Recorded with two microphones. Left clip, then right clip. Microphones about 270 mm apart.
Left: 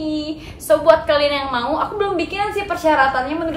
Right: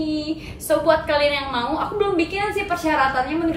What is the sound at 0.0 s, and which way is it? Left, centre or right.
A woman's voice, centre.